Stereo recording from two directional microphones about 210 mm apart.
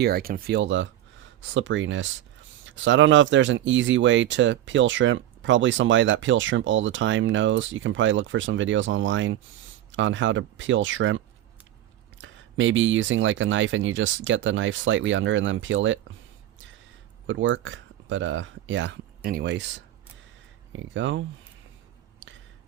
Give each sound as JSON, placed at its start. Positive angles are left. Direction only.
{"t": 0.0, "sound": "speech", "side_deg": -45}
{"t": 17.2, "sound": "speech", "side_deg": -65}
{"t": 19.2, "sound": "speech", "side_deg": -50}